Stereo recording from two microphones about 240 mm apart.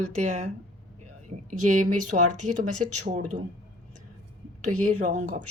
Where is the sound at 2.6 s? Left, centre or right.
Right.